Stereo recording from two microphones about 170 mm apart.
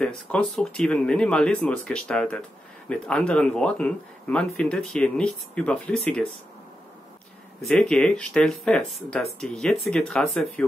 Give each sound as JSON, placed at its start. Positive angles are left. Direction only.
{"t": 0.0, "sound": "speech", "side_deg": 5}
{"t": 7.6, "sound": "speech", "side_deg": 5}